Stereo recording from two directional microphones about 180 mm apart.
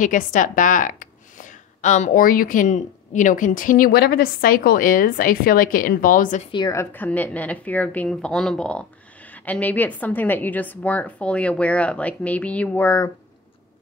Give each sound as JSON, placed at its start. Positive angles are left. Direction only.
{"t": 0.0, "sound": "a woman's voice", "side_deg": 45}
{"t": 6.5, "sound": "a woman's voice", "side_deg": 20}